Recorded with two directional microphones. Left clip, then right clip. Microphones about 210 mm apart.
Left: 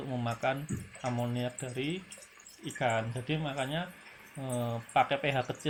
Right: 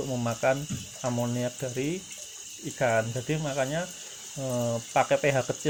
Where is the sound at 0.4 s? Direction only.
50° right (ahead or behind).